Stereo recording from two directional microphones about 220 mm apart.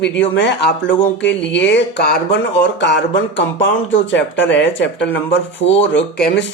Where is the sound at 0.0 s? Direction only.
55° left (ahead or behind).